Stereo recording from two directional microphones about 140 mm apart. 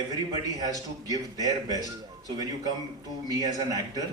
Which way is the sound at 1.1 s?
25° right (ahead or behind).